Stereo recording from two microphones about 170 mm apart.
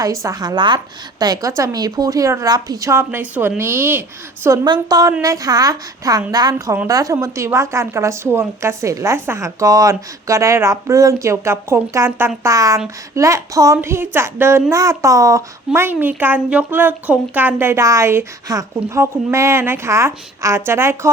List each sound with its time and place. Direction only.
0.0 s a woman's voice: 20° right (ahead or behind)